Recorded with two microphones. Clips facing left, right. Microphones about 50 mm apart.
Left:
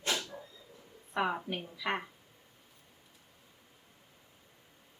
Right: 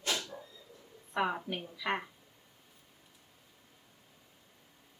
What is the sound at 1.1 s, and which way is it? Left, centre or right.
Speech, centre.